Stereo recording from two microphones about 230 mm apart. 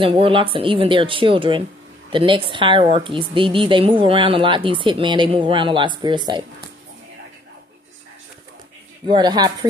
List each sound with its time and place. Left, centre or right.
0.0 s a woman's voice: right
9.0 s a woman's voice: centre